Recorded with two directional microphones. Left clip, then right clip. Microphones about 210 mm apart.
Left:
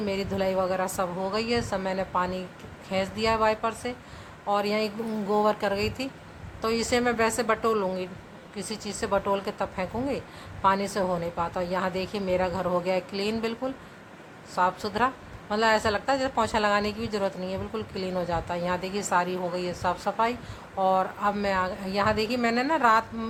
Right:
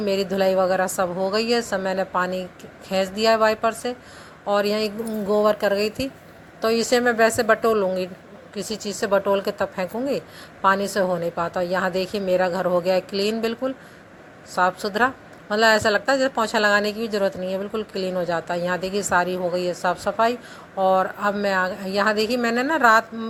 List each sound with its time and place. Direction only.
0.0 s a woman's voice: 20° right (ahead or behind)